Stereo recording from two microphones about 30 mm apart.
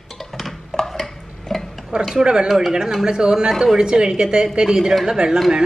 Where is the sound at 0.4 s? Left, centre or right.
Centre.